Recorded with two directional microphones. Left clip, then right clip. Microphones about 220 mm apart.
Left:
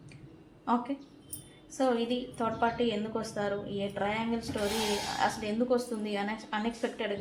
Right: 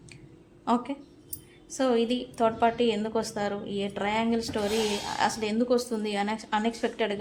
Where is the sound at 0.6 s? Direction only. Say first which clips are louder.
Right 3 dB; 35° right (ahead or behind).